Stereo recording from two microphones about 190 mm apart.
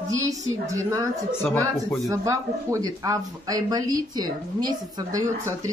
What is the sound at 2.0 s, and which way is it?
Speech, 15° right (ahead or behind).